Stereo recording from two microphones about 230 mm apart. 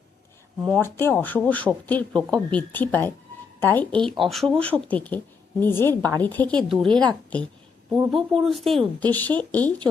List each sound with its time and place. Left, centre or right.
0.6 s speech: centre
6.9 s speech: centre
7.9 s speech: centre